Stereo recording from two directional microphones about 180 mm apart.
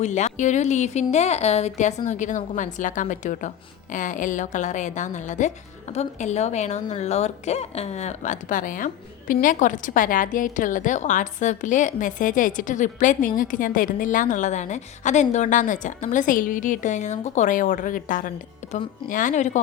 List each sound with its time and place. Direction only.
0.0 s speech: 40° left (ahead or behind)